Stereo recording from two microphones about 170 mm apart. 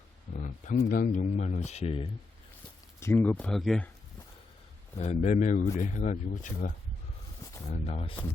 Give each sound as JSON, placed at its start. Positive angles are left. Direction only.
{"t": 0.3, "sound": "speech", "side_deg": 45}
{"t": 3.0, "sound": "speech", "side_deg": 15}
{"t": 4.9, "sound": "speech", "side_deg": 45}